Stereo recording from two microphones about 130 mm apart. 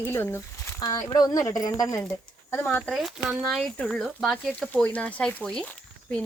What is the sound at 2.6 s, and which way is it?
Speech, 5° left (ahead or behind).